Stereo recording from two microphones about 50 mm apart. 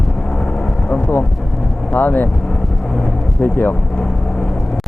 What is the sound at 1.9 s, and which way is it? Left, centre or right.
Speech, left.